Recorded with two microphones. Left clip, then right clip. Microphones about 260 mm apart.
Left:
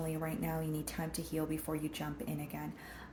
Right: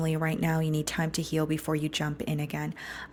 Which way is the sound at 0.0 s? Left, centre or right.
Right.